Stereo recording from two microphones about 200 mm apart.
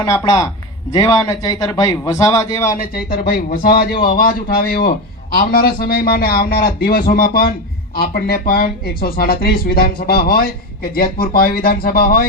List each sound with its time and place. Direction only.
0.0 s a man's voice: 20° left (ahead or behind)
2.6 s speech: 45° left (ahead or behind)